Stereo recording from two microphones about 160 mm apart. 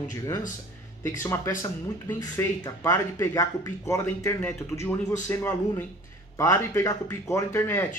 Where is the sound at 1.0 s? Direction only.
15° left (ahead or behind).